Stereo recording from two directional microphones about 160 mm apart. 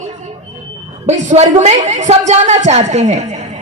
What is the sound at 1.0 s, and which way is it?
A woman's voice, 45° right (ahead or behind).